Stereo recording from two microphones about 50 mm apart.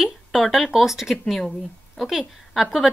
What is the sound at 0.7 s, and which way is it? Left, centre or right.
Speech, centre.